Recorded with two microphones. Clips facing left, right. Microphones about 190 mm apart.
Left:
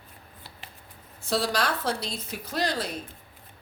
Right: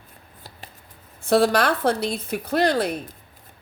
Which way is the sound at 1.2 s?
60° right (ahead or behind).